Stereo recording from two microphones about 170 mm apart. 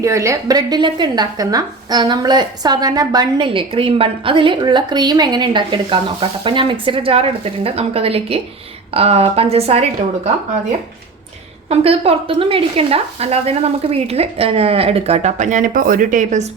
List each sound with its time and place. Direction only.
0.0 s a woman's voice: 15° right (ahead or behind); by 9.8 s 35° right (ahead or behind)
11.7 s speech: 35° right (ahead or behind)